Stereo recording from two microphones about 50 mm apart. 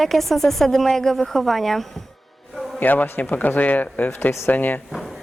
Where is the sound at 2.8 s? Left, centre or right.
Left.